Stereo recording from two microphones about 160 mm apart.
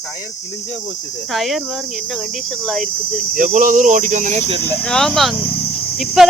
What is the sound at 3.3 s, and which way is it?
Speech, 55° right (ahead or behind).